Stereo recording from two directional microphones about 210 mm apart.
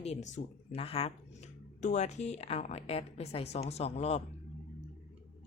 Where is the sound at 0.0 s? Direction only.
30° left (ahead or behind).